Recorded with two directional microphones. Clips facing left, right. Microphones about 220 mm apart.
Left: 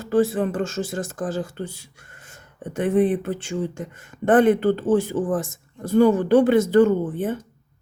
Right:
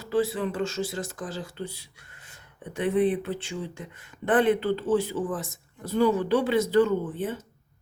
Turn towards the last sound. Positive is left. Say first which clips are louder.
# left 4 dB
turn(degrees=50)  # may be behind; listen again after turning